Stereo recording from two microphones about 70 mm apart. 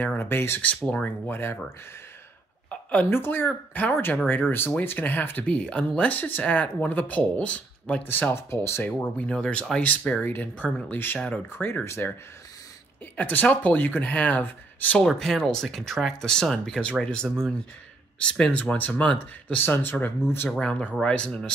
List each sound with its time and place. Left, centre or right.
0.0 s speech: left
0.8 s speech: left
2.7 s a sound: left
3.1 s speech: left
5.5 s speech: centre
8.0 s speech: left
8.8 s speech: left
13.1 s speech: left
15.0 s speech: centre
18.5 s speech: centre
20.4 s speech: centre